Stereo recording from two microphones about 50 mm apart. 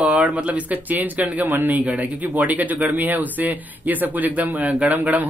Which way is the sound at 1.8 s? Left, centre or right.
Right.